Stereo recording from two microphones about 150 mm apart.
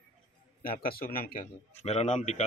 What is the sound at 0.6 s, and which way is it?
Speech, 75° left (ahead or behind).